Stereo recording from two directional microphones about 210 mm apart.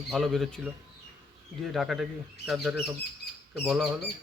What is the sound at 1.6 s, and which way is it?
Speech, centre (ahead or behind).